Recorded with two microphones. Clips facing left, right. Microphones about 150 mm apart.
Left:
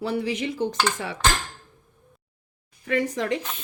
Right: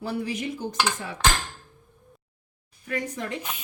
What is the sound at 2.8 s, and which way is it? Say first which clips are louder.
Speech: left 6 dB; 90° left.